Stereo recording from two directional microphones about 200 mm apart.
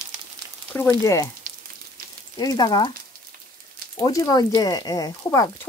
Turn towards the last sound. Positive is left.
turn(degrees=15)  # may be behind; listen again after turning